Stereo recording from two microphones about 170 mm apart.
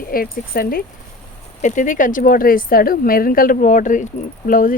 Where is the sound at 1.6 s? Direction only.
45° left (ahead or behind).